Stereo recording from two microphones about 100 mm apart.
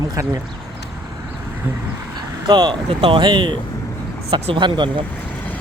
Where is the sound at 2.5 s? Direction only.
50° right (ahead or behind).